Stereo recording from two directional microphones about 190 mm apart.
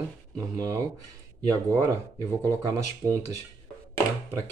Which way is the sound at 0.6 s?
20° right (ahead or behind).